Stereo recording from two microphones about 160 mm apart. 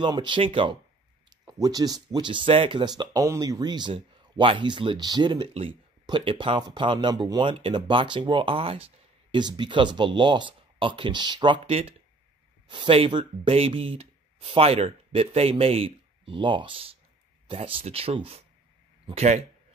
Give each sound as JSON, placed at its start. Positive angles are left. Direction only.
{"t": 0.0, "sound": "speech", "side_deg": -30}
{"t": 1.4, "sound": "speech", "side_deg": -25}